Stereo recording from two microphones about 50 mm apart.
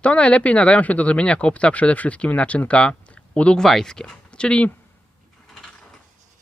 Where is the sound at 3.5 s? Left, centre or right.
Centre.